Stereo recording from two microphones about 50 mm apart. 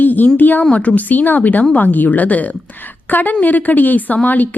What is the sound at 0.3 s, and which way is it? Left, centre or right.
Speech, left.